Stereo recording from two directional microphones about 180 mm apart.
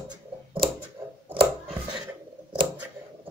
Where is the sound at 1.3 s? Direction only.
30° right (ahead or behind).